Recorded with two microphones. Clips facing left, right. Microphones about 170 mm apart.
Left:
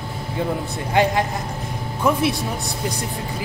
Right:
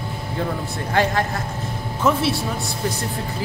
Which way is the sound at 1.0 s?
20° left (ahead or behind).